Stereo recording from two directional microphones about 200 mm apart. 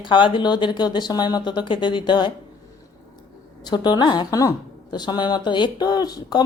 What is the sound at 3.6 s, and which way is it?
A woman's voice, 20° left (ahead or behind).